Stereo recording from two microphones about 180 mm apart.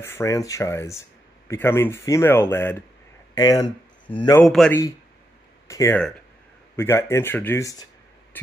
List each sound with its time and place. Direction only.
0.0 s speech: 15° left (ahead or behind)
4.4 s a man's voice: 5° left (ahead or behind)
5.7 s speech: 15° left (ahead or behind)